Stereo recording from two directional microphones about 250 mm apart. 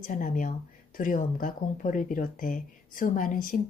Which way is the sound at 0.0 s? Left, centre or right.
Left.